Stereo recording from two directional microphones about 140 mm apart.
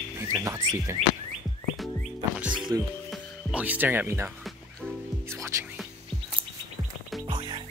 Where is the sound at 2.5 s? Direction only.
35° right (ahead or behind).